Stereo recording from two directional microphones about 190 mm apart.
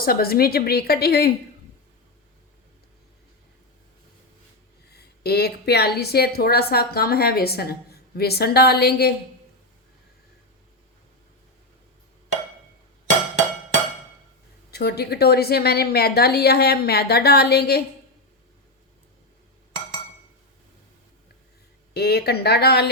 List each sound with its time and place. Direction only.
0.0 s a woman's voice: 50° left (ahead or behind)
4.9 s a woman's voice: 55° left (ahead or behind)
14.7 s a woman's voice: 55° left (ahead or behind)
21.9 s a woman's voice: 55° left (ahead or behind)